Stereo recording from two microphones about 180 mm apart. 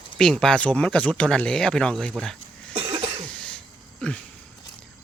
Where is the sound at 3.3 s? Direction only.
5° left (ahead or behind).